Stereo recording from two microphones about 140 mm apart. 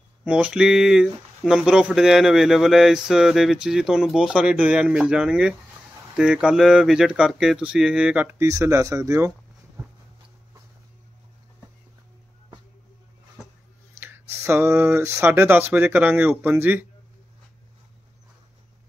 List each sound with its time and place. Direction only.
0.2 s speech: 10° right (ahead or behind)
13.9 s speech: 15° right (ahead or behind)